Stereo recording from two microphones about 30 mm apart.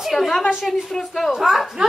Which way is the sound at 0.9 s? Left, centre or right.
Centre.